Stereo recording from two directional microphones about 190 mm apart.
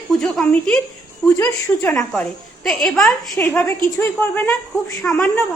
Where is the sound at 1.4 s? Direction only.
15° left (ahead or behind).